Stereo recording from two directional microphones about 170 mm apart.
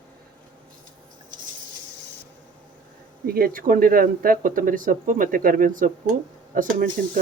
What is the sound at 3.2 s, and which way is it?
Speech, 60° right (ahead or behind).